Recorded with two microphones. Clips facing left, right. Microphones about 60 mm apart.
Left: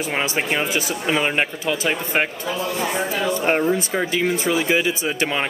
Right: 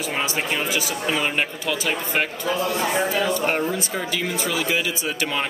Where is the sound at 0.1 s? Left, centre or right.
Left.